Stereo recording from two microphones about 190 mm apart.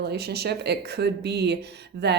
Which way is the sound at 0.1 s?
60° right (ahead or behind).